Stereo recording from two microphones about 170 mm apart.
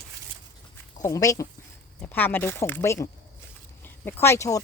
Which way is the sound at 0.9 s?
20° left (ahead or behind).